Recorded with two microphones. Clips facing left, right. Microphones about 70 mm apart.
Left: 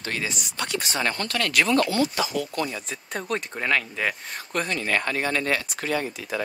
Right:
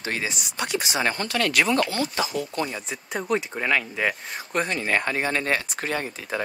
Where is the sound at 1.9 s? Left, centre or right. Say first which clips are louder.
Left 2 dB; right.